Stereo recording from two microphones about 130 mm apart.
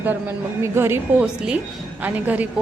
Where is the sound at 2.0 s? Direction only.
10° right (ahead or behind).